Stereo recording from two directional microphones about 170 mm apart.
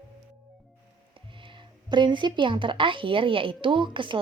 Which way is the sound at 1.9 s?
25° right (ahead or behind).